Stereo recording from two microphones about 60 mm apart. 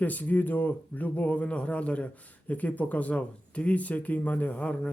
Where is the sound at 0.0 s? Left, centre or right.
Left.